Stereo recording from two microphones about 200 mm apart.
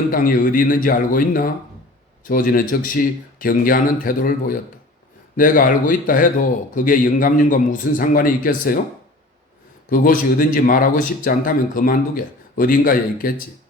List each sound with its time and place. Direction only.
0.1 s speech: 45° left (ahead or behind)
9.9 s speech: 45° left (ahead or behind)